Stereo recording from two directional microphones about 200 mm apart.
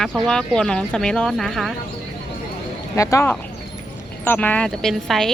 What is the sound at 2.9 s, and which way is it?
Speech, 15° left (ahead or behind).